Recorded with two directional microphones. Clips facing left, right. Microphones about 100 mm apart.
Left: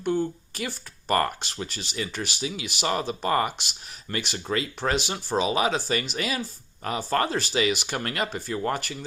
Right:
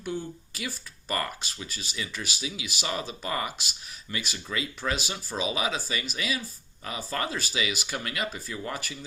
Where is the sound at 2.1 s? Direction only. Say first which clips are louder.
Left 4 dB; 60° left (ahead or behind).